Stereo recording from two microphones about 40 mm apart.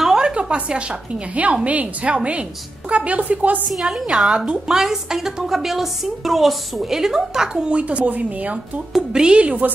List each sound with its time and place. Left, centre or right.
0.0 s a sound: centre
0.3 s a sound: right
1.3 s a woman's voice: right
3.7 s a woman's voice: centre
7.6 s a woman's voice: right
9.1 s a woman's voice: centre